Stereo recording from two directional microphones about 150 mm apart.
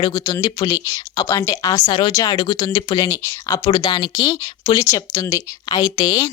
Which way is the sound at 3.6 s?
30° left (ahead or behind).